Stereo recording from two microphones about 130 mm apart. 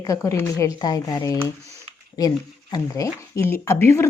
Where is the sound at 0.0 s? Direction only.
25° left (ahead or behind).